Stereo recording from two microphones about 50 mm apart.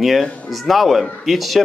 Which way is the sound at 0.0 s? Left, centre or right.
Centre.